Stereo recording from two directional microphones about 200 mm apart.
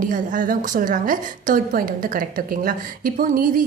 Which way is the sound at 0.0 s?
45° right (ahead or behind).